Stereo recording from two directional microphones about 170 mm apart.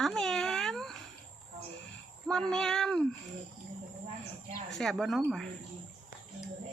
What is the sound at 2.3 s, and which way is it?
Speech, 5° left (ahead or behind).